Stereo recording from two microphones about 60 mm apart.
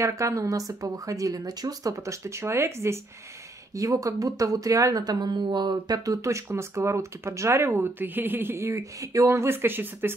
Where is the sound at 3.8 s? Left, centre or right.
Right.